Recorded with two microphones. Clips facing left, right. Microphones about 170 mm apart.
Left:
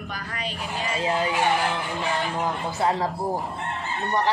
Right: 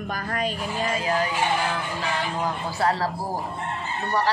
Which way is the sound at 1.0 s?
25° left (ahead or behind).